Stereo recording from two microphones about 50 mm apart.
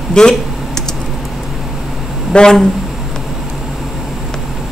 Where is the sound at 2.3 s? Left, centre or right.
Left.